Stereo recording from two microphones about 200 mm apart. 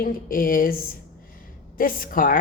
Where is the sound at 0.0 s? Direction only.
45° left (ahead or behind).